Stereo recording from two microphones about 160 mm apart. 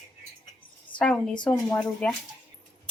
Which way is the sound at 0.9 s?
5° left (ahead or behind).